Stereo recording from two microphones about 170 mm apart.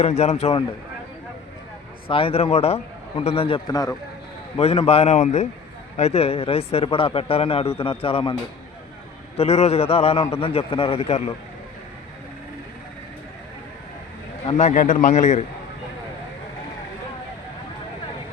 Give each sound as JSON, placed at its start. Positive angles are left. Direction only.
{"t": 0.0, "sound": "a man's voice", "side_deg": 40}
{"t": 2.0, "sound": "a man's voice", "side_deg": 30}
{"t": 4.5, "sound": "a man's voice", "side_deg": 35}
{"t": 9.4, "sound": "a man's voice", "side_deg": 40}
{"t": 14.6, "sound": "a man's voice", "side_deg": 50}